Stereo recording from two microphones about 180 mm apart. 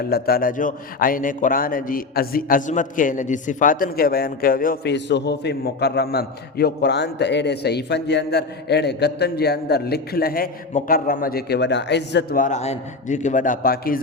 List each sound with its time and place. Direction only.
0.0 s a man's voice: 60° left (ahead or behind)
12.4 s a man's voice: 40° left (ahead or behind)